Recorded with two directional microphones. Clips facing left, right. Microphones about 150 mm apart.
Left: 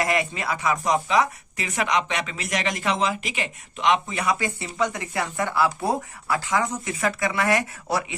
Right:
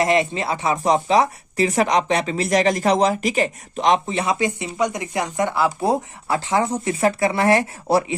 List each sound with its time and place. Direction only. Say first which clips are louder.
0.0 s speech: right 6 dB; 25° right (ahead or behind)